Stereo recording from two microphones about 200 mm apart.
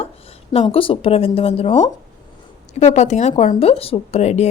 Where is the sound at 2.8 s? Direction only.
35° left (ahead or behind).